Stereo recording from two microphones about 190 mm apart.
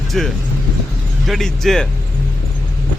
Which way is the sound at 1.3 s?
Centre (ahead or behind).